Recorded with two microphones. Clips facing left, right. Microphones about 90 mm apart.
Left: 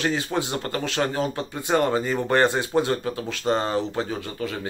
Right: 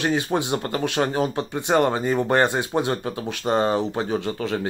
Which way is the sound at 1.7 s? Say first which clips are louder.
Right 2 dB; 30° right (ahead or behind).